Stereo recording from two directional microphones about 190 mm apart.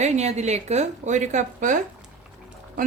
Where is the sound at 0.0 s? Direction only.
35° right (ahead or behind).